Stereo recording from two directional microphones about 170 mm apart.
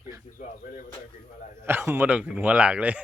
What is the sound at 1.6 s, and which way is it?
A man's voice, 15° right (ahead or behind).